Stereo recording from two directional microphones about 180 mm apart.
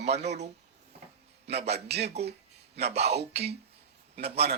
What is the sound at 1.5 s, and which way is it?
A man's voice, 35° right (ahead or behind).